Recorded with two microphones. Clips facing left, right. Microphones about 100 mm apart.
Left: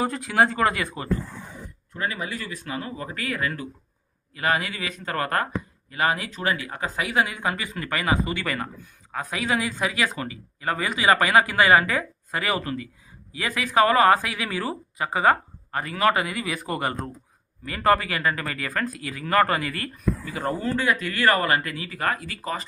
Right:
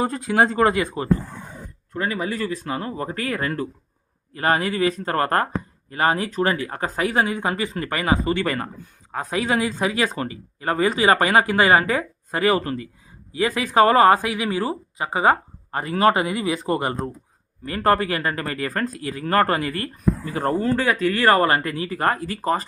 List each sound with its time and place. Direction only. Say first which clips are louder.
0.0 s speech: right 2 dB; 25° right (ahead or behind)